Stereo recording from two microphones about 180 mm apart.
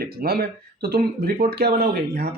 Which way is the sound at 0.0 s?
55° right (ahead or behind).